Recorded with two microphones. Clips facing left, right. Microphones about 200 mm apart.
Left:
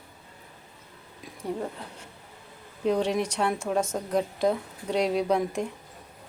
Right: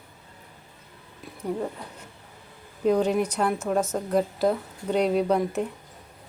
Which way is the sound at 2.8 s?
5° right (ahead or behind).